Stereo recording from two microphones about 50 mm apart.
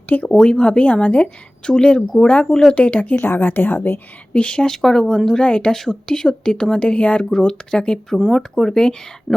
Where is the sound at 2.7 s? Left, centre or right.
Left.